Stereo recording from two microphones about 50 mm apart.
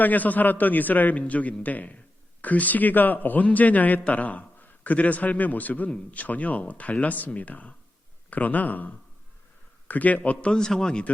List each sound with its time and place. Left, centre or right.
0.0 s a man's voice: left
10.5 s a man's voice: centre